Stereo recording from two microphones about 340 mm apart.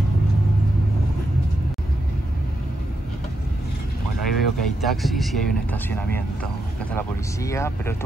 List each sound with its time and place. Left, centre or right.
4.4 s speech: centre